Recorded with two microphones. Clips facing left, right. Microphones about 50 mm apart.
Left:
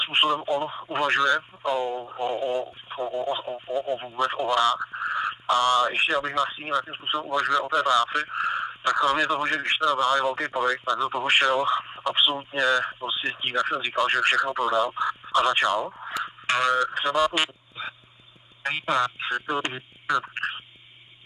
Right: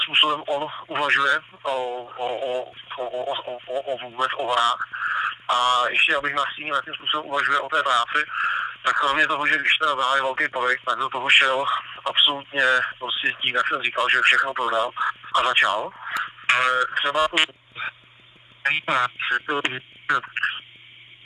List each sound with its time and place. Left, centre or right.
0.0 s speech: centre
17.8 s dog: right
18.6 s speech: right